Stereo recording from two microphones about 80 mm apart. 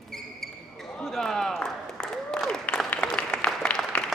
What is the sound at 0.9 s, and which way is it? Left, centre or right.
Applause, centre.